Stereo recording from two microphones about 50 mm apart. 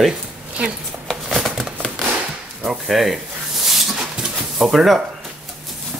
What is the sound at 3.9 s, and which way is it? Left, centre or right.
Dog, centre.